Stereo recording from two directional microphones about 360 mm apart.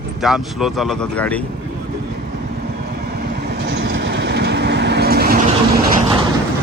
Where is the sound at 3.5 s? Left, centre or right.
Right.